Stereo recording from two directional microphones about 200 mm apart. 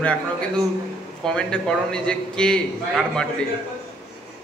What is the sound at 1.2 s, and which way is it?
A man's voice, 5° left (ahead or behind).